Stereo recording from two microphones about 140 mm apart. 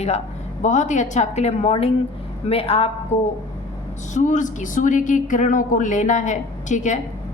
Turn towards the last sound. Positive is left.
turn(degrees=60)  # may be behind; listen again after turning